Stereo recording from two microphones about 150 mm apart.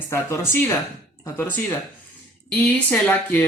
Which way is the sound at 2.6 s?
15° left (ahead or behind).